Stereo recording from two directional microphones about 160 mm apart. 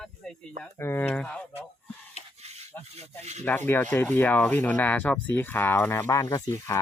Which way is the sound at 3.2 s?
45° right (ahead or behind).